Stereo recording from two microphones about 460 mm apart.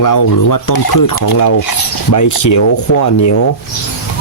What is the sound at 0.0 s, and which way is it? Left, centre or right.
Speech, left.